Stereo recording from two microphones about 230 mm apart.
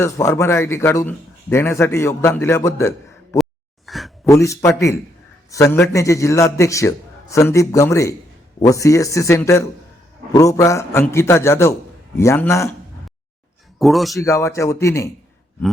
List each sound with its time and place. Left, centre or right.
0.0 s speech: centre
3.8 s a sound: centre
4.3 s speech: centre
13.7 s speech: centre
14.2 s speech: centre